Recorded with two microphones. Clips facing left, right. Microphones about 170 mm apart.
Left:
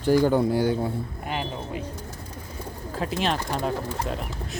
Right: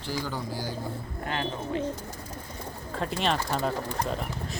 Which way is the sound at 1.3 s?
15° left (ahead or behind).